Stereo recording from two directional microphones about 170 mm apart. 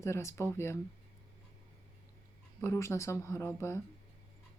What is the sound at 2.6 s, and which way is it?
Speech, 15° left (ahead or behind).